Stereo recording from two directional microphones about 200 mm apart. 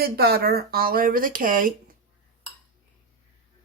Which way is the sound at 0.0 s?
50° right (ahead or behind).